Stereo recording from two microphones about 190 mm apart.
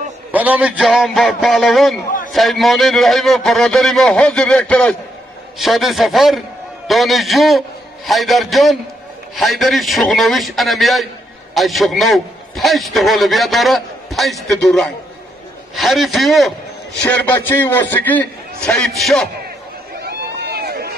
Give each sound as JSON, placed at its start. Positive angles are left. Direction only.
{"t": 0.3, "sound": "a man's voice", "side_deg": -10}
{"t": 20.0, "sound": "run", "side_deg": -55}